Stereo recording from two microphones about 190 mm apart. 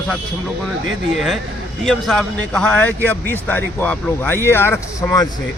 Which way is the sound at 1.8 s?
Centre (ahead or behind).